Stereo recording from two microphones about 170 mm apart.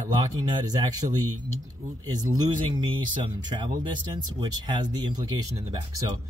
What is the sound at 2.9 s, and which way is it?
Speech, 25° right (ahead or behind).